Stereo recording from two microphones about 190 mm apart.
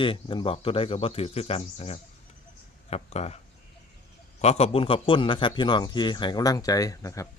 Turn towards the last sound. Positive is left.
turn(degrees=15)  # may be behind; listen again after turning